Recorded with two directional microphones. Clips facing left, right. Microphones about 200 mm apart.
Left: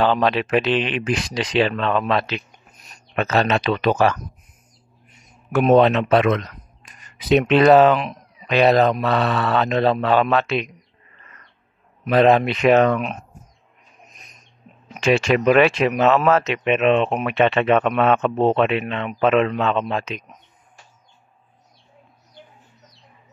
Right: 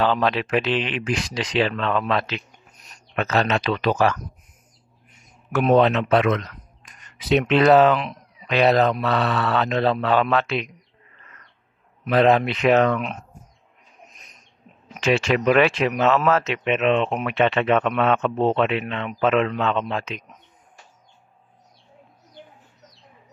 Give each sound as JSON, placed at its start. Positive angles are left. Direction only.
{"t": 0.0, "sound": "speech", "side_deg": 20}
{"t": 5.5, "sound": "speech", "side_deg": 15}
{"t": 6.8, "sound": "speech", "side_deg": 5}
{"t": 12.1, "sound": "speech", "side_deg": 20}
{"t": 15.0, "sound": "speech", "side_deg": 15}